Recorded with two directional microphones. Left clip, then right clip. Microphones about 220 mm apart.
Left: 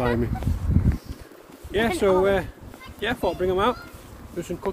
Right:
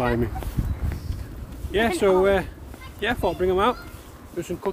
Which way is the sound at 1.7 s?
10° right (ahead or behind).